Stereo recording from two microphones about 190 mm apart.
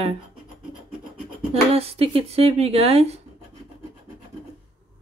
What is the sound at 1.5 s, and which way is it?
Speech, 30° right (ahead or behind).